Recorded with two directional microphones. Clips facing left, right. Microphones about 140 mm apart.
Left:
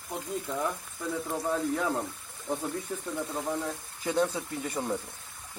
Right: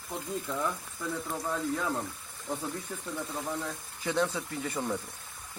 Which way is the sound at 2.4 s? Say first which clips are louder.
Left 3 dB; 20° left (ahead or behind).